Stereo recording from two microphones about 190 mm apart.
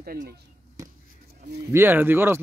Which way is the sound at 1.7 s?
10° right (ahead or behind).